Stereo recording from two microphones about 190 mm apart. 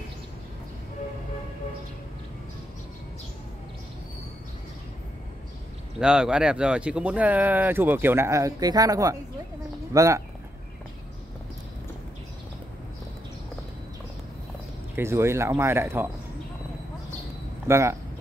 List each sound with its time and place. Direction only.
5.9 s speech: 5° right (ahead or behind)
15.0 s speech: 15° right (ahead or behind)
17.6 s speech: 15° right (ahead or behind)